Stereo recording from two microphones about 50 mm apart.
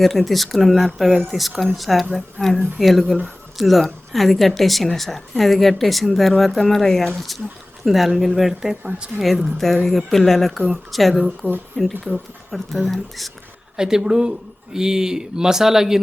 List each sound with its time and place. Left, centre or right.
0.0 s speech: centre
9.6 s speech: centre
11.4 s speech: right
12.1 s speech: centre
13.7 s speech: centre